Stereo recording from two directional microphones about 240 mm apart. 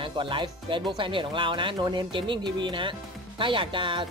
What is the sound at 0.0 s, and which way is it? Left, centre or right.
Speech, right.